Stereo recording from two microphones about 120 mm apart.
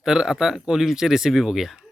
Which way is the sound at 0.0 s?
5° right (ahead or behind).